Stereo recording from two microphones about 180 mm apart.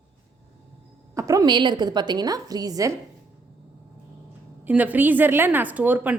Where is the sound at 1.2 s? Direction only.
20° right (ahead or behind).